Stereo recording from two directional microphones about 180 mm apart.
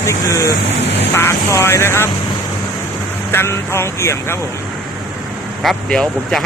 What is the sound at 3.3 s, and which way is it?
Speech, 15° left (ahead or behind).